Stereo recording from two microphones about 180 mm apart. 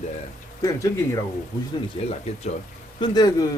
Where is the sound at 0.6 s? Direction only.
15° left (ahead or behind).